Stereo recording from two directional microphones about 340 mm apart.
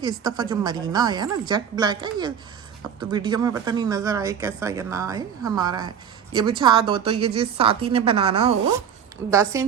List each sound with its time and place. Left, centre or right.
0.0 s speech: centre